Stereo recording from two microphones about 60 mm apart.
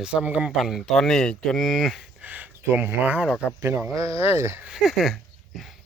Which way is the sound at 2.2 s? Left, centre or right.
Right.